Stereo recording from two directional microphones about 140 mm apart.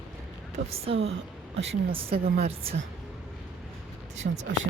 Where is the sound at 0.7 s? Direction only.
45° right (ahead or behind).